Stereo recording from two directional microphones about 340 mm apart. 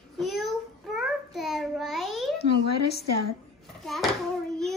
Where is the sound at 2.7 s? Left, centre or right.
Left.